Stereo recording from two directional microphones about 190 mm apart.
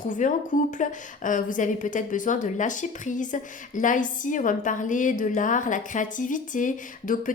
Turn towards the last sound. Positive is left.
turn(degrees=45)  # may be behind; listen again after turning